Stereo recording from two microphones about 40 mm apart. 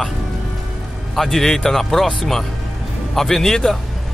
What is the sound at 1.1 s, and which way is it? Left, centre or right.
Speech, centre.